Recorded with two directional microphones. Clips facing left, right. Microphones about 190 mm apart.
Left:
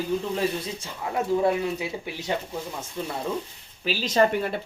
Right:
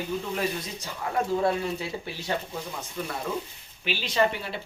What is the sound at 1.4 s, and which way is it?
Speech, 15° left (ahead or behind).